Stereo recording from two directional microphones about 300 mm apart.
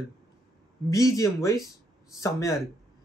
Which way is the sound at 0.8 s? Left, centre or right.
Centre.